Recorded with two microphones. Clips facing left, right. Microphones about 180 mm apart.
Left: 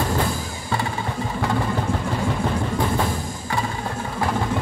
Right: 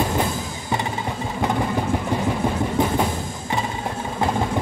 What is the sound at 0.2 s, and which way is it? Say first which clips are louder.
Music: right 1 dB; 20° right (ahead or behind).